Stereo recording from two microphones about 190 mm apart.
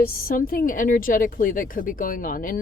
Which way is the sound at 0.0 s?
50° left (ahead or behind).